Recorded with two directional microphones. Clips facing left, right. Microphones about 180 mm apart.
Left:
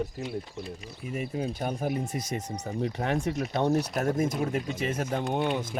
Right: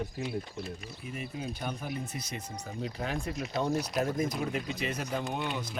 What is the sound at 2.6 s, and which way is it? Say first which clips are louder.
Speech: left 4 dB; 65° left (ahead or behind).